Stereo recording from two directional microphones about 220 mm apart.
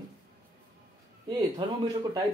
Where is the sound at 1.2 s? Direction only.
20° right (ahead or behind).